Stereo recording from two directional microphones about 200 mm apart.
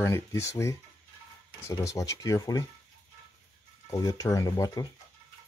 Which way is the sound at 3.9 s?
15° left (ahead or behind).